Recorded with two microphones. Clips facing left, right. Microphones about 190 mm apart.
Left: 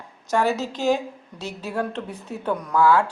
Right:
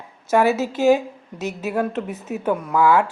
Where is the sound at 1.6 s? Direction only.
10° right (ahead or behind).